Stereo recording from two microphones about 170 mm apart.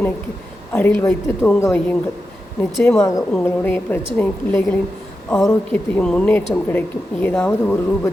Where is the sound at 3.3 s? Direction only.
10° left (ahead or behind).